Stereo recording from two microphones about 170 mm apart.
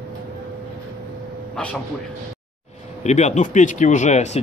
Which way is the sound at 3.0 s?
40° left (ahead or behind).